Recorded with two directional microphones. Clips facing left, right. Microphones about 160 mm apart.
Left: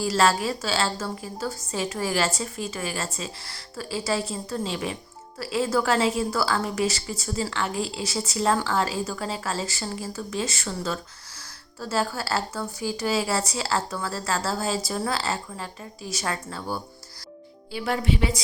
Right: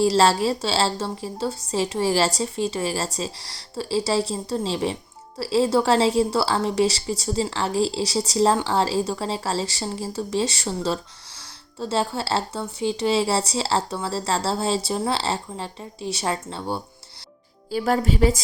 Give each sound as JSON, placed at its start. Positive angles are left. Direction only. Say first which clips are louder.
{"t": 0.0, "sound": "a woman's voice", "louder": "right 4 dB", "side_deg": -30}
{"t": 17.7, "sound": "a woman's voice", "louder": "right 4 dB", "side_deg": -40}